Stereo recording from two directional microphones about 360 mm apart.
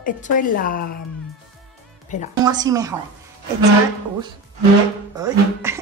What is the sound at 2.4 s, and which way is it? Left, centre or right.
Speech, centre.